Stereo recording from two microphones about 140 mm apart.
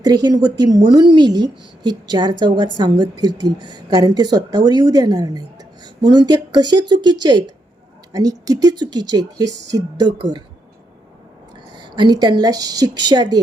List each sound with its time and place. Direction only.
0.0 s speech: 30° right (ahead or behind)
11.8 s speech: 35° right (ahead or behind)